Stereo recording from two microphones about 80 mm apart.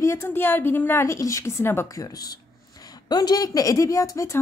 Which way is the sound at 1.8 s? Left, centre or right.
Left.